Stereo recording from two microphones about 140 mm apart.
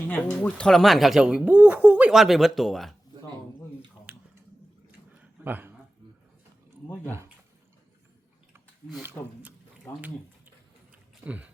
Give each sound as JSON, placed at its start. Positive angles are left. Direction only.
{"t": 0.1, "sound": "speech", "side_deg": 10}
{"t": 4.9, "sound": "a sound", "side_deg": -10}
{"t": 9.2, "sound": "speech", "side_deg": 20}
{"t": 11.2, "sound": "speech", "side_deg": -10}